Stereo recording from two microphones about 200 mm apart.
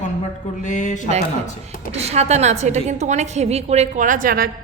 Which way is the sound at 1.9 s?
30° right (ahead or behind).